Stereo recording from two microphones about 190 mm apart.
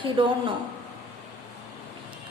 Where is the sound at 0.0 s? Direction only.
25° right (ahead or behind).